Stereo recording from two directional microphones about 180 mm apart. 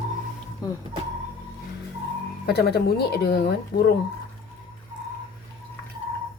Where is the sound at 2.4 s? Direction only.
65° left (ahead or behind).